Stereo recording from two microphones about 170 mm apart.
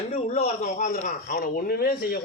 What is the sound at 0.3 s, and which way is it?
Speech, 45° left (ahead or behind).